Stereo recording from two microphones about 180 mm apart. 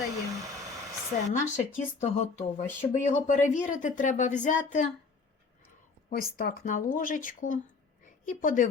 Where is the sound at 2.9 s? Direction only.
45° left (ahead or behind).